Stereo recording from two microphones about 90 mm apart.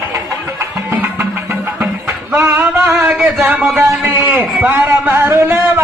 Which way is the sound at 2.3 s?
25° right (ahead or behind).